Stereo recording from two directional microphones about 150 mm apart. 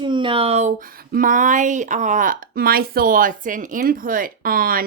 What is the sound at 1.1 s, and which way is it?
Speech, 65° right (ahead or behind).